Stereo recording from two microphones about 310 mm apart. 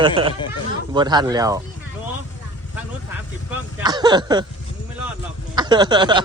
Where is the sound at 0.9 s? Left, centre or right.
Centre.